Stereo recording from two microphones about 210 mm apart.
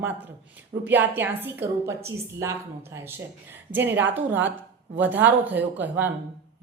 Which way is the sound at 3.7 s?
10° right (ahead or behind).